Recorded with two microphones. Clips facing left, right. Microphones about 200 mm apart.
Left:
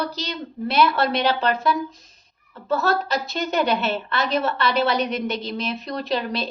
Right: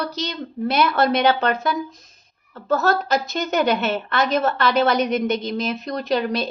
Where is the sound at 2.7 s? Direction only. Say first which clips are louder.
Right 2 dB; 45° right (ahead or behind).